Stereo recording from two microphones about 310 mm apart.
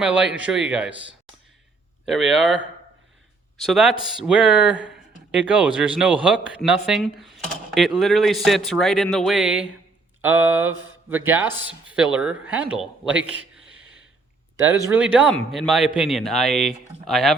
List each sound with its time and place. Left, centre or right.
0.0 s speech: centre
2.0 s speech: centre
3.6 s speech: centre
13.7 s a sound: right
14.5 s speech: centre